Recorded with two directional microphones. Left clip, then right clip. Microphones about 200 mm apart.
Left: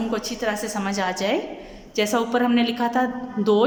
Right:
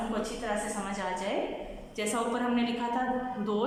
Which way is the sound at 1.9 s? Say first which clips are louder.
Left 10 dB; 40° left (ahead or behind).